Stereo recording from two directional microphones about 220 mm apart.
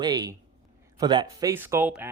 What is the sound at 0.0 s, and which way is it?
Speech, 15° right (ahead or behind).